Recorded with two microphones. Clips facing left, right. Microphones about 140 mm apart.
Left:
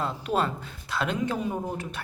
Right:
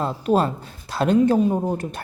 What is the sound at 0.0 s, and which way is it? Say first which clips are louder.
Speech: right 7 dB; 40° right (ahead or behind).